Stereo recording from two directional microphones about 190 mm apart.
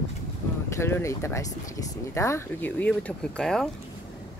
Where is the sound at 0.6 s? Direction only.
15° left (ahead or behind).